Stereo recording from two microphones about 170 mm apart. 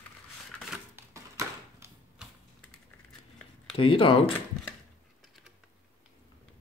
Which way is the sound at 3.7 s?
30° left (ahead or behind).